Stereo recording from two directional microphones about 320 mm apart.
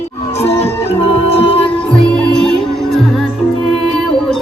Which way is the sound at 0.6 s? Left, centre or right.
Centre.